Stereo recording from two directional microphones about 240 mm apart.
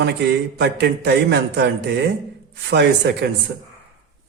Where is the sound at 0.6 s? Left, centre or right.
Right.